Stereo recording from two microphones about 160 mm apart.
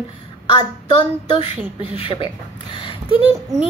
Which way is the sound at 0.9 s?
30° left (ahead or behind).